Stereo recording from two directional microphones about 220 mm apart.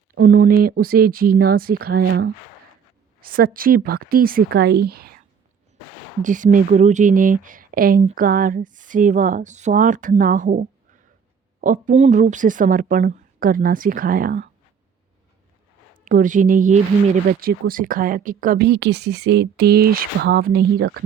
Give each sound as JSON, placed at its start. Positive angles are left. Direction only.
{"t": 0.2, "sound": "speech", "side_deg": -40}
{"t": 3.2, "sound": "speech", "side_deg": -40}
{"t": 6.2, "sound": "speech", "side_deg": -35}
{"t": 16.0, "sound": "speech", "side_deg": -35}